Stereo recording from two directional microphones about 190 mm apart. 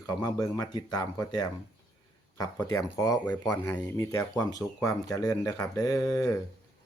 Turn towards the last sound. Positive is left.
turn(degrees=15)  # may be behind; listen again after turning